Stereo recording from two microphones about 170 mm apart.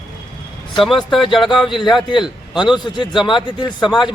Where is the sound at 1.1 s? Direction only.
Centre (ahead or behind).